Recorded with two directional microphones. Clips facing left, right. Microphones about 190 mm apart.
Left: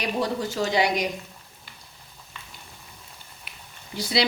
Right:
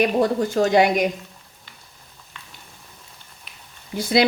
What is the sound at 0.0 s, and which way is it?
A woman's voice, 50° right (ahead or behind).